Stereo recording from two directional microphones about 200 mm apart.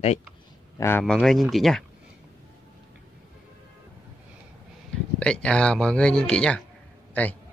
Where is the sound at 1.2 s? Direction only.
Centre (ahead or behind).